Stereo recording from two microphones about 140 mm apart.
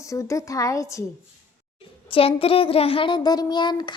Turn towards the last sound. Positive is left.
turn(degrees=30)  # may be behind; listen again after turning